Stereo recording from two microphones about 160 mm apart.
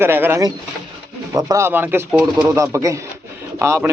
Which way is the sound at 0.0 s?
15° right (ahead or behind).